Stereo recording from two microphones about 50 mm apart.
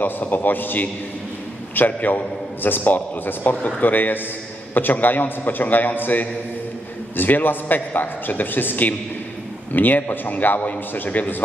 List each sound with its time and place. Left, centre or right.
0.0 s a man's voice: left